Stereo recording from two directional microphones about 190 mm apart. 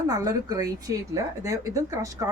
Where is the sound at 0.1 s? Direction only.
20° right (ahead or behind).